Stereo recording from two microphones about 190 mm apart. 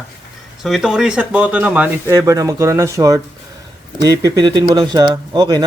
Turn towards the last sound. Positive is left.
turn(degrees=-20)  # may be behind; listen again after turning